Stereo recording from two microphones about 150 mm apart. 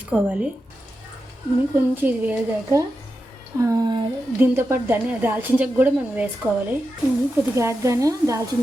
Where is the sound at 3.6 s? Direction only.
25° right (ahead or behind).